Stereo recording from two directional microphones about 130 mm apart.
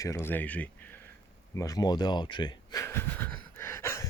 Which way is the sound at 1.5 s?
25° left (ahead or behind).